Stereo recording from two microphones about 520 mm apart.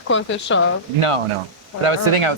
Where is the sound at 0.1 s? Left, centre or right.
Left.